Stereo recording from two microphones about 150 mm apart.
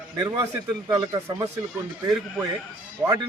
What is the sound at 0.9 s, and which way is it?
Speech, 25° right (ahead or behind).